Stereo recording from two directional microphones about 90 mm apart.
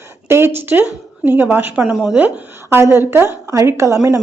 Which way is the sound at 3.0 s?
30° right (ahead or behind).